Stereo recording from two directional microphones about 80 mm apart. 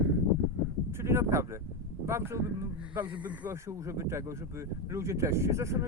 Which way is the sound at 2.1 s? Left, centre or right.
Right.